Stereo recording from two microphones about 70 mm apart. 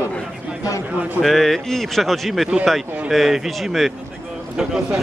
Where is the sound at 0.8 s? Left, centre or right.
Right.